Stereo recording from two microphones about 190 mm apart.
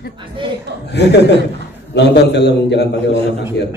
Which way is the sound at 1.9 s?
65° left (ahead or behind).